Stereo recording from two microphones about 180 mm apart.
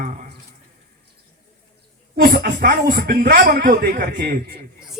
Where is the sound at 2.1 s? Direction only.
55° right (ahead or behind).